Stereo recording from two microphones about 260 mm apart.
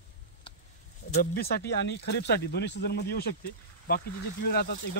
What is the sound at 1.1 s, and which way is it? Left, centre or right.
Speech, left.